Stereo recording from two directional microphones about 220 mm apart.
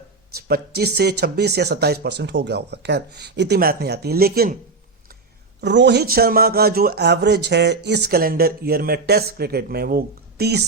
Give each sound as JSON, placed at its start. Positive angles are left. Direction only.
{"t": 0.3, "sound": "a man's voice", "side_deg": -45}
{"t": 5.5, "sound": "a man's voice", "side_deg": -50}